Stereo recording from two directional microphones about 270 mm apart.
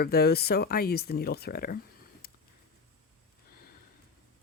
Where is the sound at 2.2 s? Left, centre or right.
Left.